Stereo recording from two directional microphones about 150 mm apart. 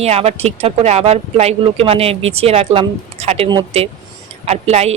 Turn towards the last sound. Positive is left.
turn(degrees=-45)  # may be behind; listen again after turning